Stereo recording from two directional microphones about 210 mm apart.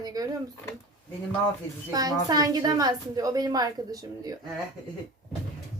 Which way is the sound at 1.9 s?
20° right (ahead or behind).